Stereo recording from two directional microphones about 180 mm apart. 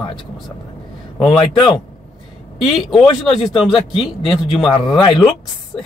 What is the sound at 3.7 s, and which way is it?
Speech, 30° left (ahead or behind).